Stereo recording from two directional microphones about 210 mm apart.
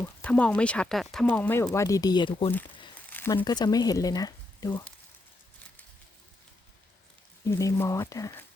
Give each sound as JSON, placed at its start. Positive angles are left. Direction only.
{"t": 0.0, "sound": "speech", "side_deg": 5}
{"t": 3.1, "sound": "a sound", "side_deg": 10}
{"t": 3.3, "sound": "speech", "side_deg": 20}
{"t": 7.4, "sound": "speech", "side_deg": 15}